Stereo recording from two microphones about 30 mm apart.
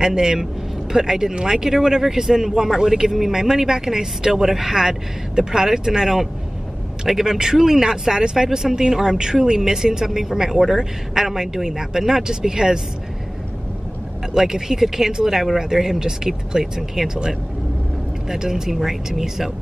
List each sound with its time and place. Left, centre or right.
0.0 s speech: centre
14.3 s speech: centre
18.3 s speech: centre